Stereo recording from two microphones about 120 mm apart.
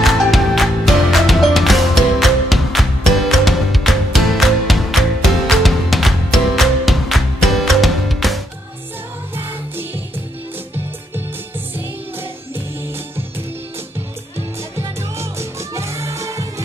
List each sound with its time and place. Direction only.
0.0 s music: centre (ahead or behind)
14.8 s music: 25° right (ahead or behind)